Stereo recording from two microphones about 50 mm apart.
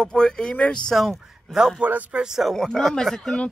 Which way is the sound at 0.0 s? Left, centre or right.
Centre.